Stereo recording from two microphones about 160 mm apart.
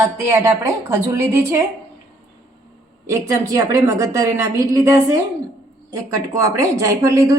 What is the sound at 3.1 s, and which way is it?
A woman's voice, 20° right (ahead or behind).